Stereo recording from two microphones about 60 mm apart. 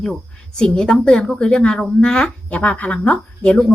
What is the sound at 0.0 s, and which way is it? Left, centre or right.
A woman's voice, centre.